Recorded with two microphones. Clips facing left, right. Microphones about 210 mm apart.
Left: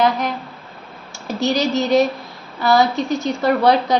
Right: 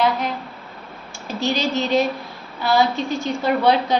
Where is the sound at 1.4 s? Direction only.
40° left (ahead or behind).